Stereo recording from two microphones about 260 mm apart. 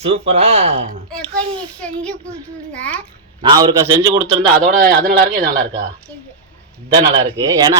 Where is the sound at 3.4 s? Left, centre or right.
Centre.